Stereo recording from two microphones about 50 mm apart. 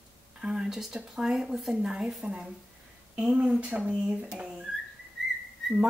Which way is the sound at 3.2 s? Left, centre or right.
Right.